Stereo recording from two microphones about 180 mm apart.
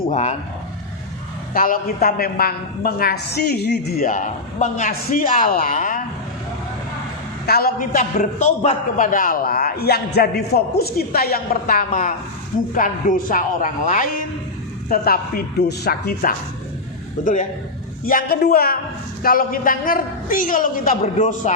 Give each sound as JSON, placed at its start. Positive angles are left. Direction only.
{"t": 0.0, "sound": "speech", "side_deg": 40}
{"t": 1.5, "sound": "a man's voice", "side_deg": 50}
{"t": 4.0, "sound": "a woman's voice", "side_deg": 45}
{"t": 7.4, "sound": "a man's voice", "side_deg": 60}
{"t": 17.2, "sound": "a woman's voice", "side_deg": 45}